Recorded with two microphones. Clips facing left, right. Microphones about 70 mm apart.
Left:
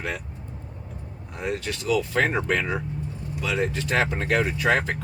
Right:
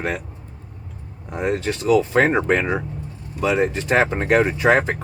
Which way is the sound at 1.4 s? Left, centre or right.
Right.